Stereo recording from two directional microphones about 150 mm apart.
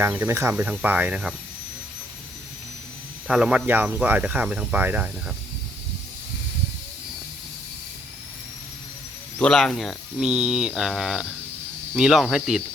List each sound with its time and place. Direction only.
0.0 s speech: 15° right (ahead or behind)
3.2 s speech: 5° right (ahead or behind)
9.4 s speech: 5° left (ahead or behind)